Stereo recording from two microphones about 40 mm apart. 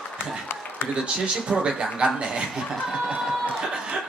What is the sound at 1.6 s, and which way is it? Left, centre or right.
Speech, right.